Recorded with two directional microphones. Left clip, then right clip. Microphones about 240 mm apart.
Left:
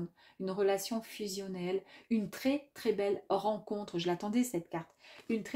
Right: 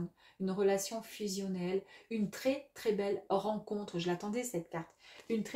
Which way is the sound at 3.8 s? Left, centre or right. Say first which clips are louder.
Left 4 dB; left.